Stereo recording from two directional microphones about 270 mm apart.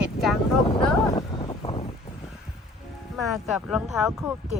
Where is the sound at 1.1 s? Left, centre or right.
Centre.